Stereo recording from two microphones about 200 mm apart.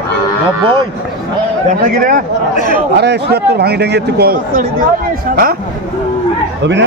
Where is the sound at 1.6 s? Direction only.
45° right (ahead or behind).